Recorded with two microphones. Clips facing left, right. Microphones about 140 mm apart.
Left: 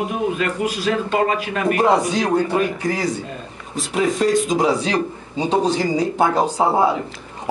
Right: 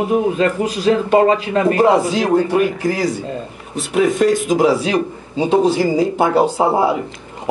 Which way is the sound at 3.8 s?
Centre (ahead or behind).